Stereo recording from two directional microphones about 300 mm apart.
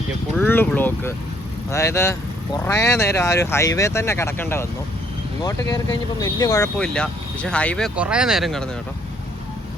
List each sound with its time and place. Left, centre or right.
0.3 s speech: centre